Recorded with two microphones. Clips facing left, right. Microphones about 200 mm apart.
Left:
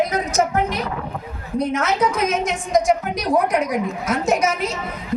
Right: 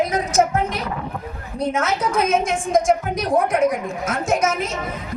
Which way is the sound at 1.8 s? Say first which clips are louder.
Right 1 dB; 50° right (ahead or behind).